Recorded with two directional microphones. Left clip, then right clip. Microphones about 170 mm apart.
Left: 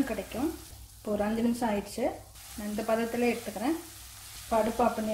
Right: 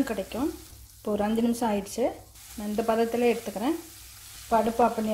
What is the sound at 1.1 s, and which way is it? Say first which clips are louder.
Stir: right 3 dB; 50° right (ahead or behind).